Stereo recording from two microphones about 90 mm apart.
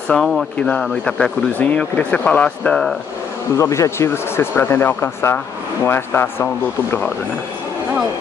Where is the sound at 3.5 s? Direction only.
35° left (ahead or behind).